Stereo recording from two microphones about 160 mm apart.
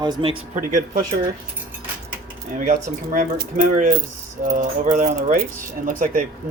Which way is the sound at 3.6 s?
60° right (ahead or behind).